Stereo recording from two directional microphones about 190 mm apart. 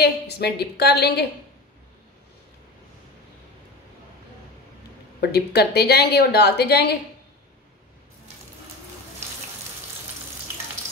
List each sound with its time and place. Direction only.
0.0 s a woman's voice: 60° left (ahead or behind)
5.2 s a woman's voice: 60° left (ahead or behind)